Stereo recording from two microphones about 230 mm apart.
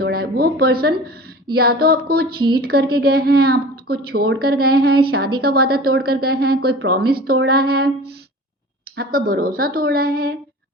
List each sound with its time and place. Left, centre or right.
0.0 s a woman's voice: right